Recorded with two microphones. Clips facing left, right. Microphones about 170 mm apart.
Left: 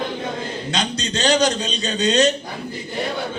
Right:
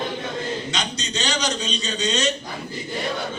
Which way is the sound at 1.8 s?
55° left (ahead or behind).